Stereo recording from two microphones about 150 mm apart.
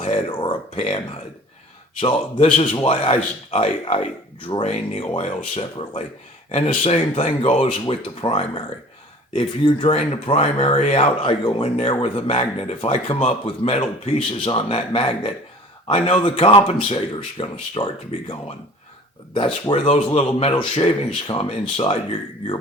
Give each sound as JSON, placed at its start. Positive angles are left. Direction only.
{"t": 0.0, "sound": "speech", "side_deg": 35}
{"t": 6.5, "sound": "speech", "side_deg": 40}
{"t": 19.3, "sound": "speech", "side_deg": 35}